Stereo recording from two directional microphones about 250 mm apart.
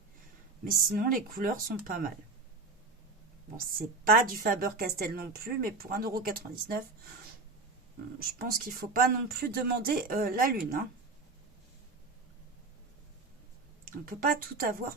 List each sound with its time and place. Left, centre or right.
0.6 s a woman's voice: right
3.7 s a woman's voice: right
8.2 s a woman's voice: right
13.8 s a woman's voice: right